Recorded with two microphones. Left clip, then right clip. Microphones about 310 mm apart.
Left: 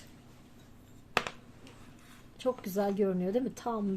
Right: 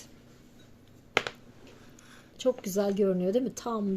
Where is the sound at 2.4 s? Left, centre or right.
Centre.